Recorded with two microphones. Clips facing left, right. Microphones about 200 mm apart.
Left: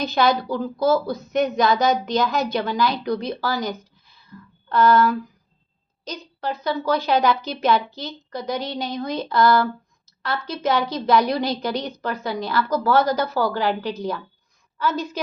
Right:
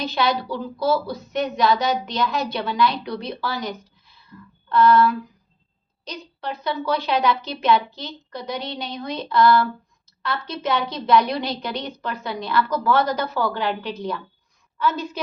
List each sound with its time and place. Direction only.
0.0 s a woman's voice: 45° left (ahead or behind)
10.1 s a sound: 45° left (ahead or behind)
10.6 s a woman's voice: 45° left (ahead or behind)